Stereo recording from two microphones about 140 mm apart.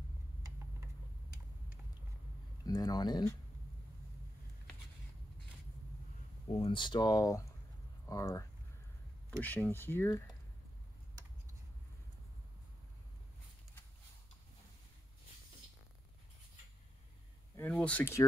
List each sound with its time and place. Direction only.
2.6 s speech: 30° left (ahead or behind)
6.5 s speech: 40° left (ahead or behind); by 10.3 s 20° left (ahead or behind)
17.6 s speech: 10° left (ahead or behind)